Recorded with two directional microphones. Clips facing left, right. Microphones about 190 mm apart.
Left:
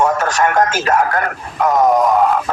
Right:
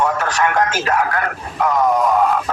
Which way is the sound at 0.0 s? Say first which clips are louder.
Left 3 dB; 45° left (ahead or behind).